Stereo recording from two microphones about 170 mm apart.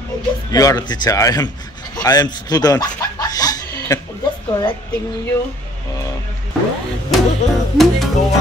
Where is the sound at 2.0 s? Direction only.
25° left (ahead or behind).